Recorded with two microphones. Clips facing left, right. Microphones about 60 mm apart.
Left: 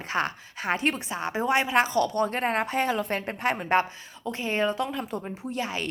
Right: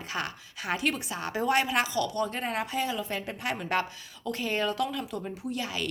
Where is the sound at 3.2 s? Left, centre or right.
Left.